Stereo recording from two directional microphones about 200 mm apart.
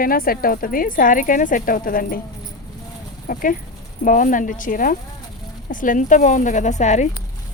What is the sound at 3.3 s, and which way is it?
Speech, 40° left (ahead or behind).